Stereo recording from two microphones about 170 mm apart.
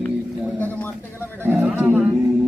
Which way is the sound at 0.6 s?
10° left (ahead or behind).